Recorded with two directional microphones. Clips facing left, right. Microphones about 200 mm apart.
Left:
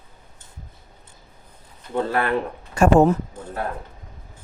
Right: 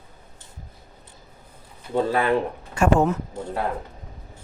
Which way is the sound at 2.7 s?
40° left (ahead or behind).